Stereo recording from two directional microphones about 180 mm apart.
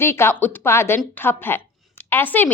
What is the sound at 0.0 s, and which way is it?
Speech, 15° left (ahead or behind).